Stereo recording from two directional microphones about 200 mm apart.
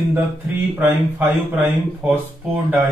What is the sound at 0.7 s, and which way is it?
A man's voice, 10° right (ahead or behind).